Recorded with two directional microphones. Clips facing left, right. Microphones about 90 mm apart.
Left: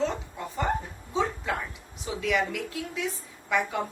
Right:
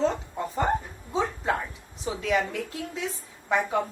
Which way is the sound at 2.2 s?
35° right (ahead or behind).